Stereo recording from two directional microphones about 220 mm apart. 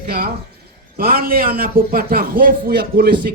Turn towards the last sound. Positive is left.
turn(degrees=-45)  # may be behind; listen again after turning